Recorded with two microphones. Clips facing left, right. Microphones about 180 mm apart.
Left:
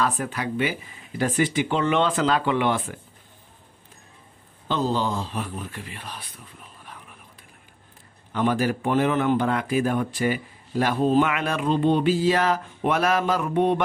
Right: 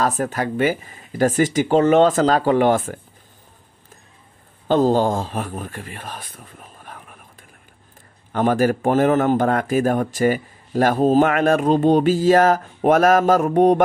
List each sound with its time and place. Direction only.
0.0 s a man's voice: 45° right (ahead or behind)
4.6 s speech: 45° right (ahead or behind)
8.3 s a man's voice: 45° right (ahead or behind)